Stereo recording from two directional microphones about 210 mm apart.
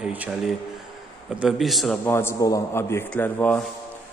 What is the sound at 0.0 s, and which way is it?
A man's voice, 5° right (ahead or behind).